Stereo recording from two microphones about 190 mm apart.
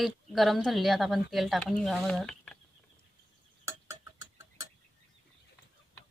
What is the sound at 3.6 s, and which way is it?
Tick-tock, 15° right (ahead or behind).